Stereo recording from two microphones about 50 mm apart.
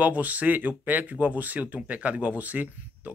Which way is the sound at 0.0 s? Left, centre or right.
Right.